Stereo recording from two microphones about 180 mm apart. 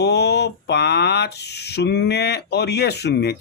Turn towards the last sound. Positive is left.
turn(degrees=65)  # may be behind; listen again after turning